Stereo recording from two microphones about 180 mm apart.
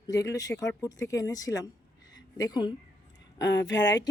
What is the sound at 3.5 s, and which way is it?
Speech, 80° left.